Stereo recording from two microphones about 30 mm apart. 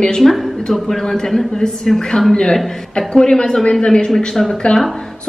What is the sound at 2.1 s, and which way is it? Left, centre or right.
Speech, left.